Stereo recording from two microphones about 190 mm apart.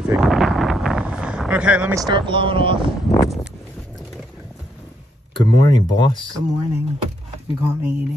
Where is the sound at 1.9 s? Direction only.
25° right (ahead or behind).